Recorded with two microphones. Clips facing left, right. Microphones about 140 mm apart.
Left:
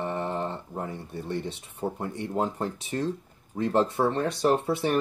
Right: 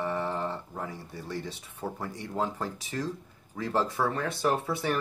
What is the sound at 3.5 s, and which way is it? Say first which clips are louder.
Speech: left 6 dB; 30° left (ahead or behind).